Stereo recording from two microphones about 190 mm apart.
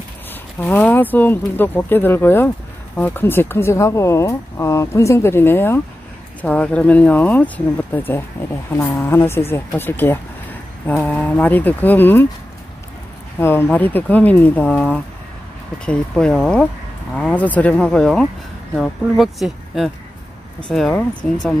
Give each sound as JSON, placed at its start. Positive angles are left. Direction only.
{"t": 0.6, "sound": "speech", "side_deg": 10}
{"t": 13.4, "sound": "speech", "side_deg": 10}